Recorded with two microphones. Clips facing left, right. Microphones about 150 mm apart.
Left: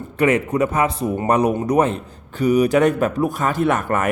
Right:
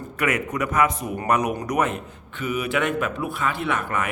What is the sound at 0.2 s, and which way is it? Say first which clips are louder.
A man's voice: left 8 dB; 30° left (ahead or behind).